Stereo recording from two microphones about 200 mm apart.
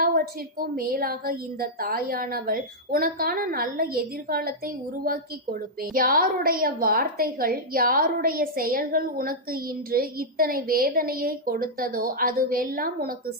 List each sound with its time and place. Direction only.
0.0 s a woman's voice: 50° right (ahead or behind)